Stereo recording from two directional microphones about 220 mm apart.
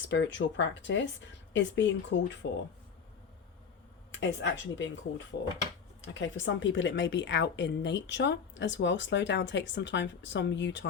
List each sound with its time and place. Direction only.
0.1 s speech: 55° left (ahead or behind)
4.1 s a woman's voice: 55° left (ahead or behind)